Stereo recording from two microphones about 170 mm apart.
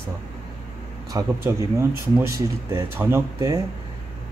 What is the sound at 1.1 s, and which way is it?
Speech, 15° right (ahead or behind).